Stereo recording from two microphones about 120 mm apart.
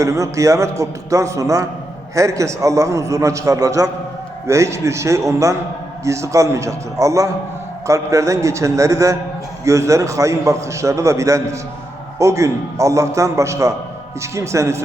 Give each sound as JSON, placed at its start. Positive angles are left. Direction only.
{"t": 0.0, "sound": "a man's voice", "side_deg": -25}